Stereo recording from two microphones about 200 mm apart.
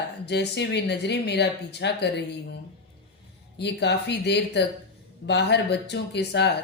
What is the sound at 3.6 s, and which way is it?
Speech, 55° left (ahead or behind).